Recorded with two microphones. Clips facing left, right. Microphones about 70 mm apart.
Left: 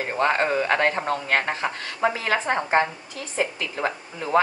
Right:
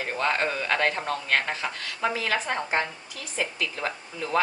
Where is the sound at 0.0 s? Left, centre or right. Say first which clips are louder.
Left 4 dB; left.